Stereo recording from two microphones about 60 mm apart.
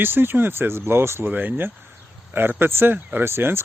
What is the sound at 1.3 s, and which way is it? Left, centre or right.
Speech, right.